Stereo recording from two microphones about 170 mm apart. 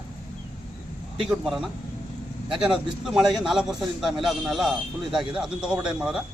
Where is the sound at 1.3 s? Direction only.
Centre (ahead or behind).